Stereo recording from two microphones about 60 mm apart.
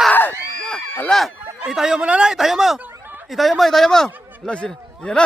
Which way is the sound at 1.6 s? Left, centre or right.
Centre.